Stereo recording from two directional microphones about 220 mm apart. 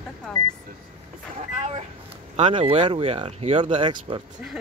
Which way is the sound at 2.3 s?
30° right (ahead or behind).